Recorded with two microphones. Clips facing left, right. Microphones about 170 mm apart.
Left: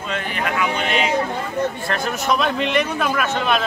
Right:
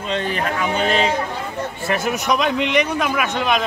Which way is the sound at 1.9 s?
15° right (ahead or behind).